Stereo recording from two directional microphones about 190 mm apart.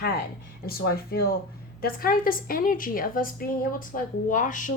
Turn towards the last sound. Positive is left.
turn(degrees=45)  # may be behind; listen again after turning